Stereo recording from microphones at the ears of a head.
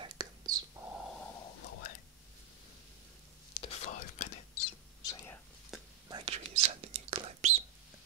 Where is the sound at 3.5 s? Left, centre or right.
Left.